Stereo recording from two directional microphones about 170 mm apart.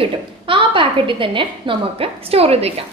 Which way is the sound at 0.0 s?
30° right (ahead or behind).